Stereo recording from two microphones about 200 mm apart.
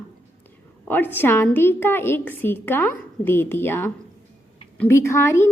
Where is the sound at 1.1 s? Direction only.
10° left (ahead or behind).